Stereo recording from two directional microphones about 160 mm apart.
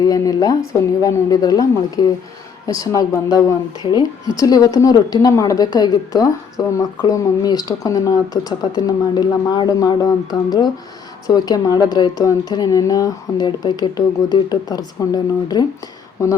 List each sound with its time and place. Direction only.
0.0 s a woman's voice: 25° left (ahead or behind)